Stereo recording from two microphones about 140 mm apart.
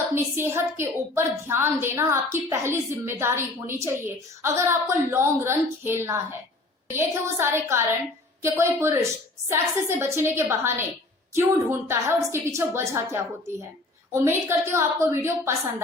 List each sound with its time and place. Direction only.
0.1 s a woman's voice: 15° right (ahead or behind)